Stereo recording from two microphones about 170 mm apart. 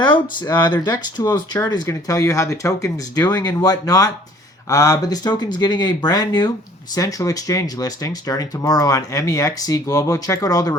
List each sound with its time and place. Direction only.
0.0 s speech: 25° left (ahead or behind)